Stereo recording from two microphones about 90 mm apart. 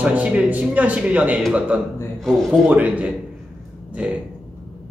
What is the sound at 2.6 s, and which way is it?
A man's voice, 15° right (ahead or behind).